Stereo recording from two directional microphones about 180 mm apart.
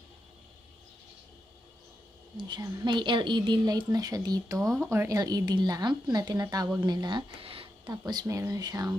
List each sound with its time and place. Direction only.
2.3 s a woman's voice: 25° right (ahead or behind)
4.6 s speech: centre (ahead or behind)
4.8 s a woman's voice: 15° right (ahead or behind)
7.9 s a woman's voice: 20° right (ahead or behind)